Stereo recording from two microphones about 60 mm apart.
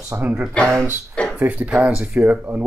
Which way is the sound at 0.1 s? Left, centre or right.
Right.